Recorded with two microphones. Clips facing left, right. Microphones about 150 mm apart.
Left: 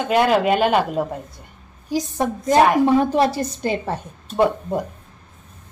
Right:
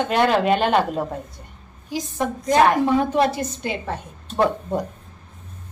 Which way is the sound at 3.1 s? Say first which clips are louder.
Left 1 dB; 35° left (ahead or behind).